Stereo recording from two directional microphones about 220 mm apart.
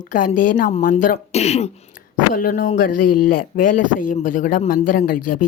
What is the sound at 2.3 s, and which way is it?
Speech, 40° left (ahead or behind).